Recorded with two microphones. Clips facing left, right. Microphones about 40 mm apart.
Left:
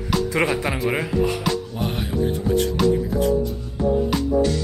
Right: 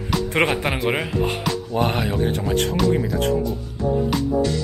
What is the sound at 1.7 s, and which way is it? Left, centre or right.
Speech, right.